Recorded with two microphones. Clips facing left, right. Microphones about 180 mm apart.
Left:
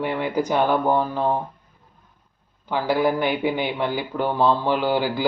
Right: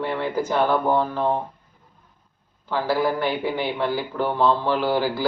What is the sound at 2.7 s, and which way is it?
A man's voice, 15° left (ahead or behind).